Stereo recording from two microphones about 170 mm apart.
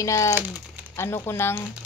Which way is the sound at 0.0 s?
20° left (ahead or behind).